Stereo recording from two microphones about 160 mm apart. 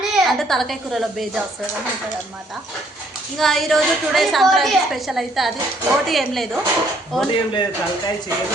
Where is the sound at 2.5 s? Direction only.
Centre (ahead or behind).